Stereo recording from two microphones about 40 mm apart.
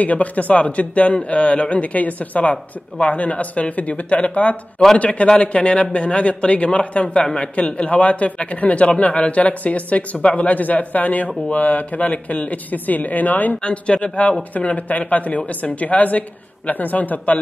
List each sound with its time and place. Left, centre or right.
0.0 s a man's voice: left
13.7 s a man's voice: left